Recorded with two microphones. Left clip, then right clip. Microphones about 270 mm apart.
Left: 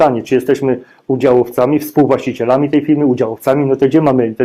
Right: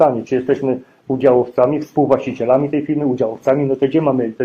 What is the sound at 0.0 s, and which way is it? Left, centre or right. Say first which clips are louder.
Speech: left 3 dB; left.